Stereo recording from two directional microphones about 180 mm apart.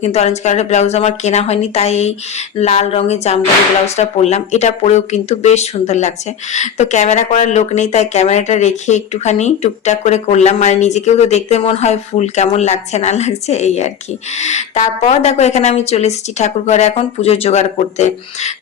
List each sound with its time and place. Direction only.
0.0 s speech: 35° left (ahead or behind)